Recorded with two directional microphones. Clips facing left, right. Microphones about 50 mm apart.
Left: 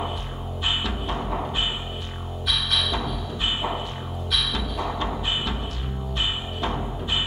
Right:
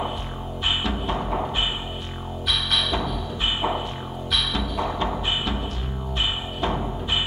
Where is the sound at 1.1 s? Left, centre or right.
Centre.